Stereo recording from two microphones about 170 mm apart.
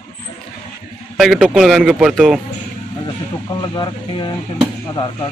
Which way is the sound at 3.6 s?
25° left (ahead or behind).